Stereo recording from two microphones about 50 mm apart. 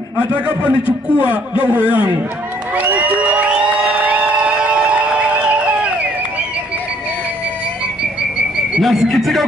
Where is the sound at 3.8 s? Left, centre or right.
Right.